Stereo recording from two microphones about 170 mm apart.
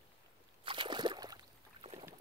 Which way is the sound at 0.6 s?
30° right (ahead or behind).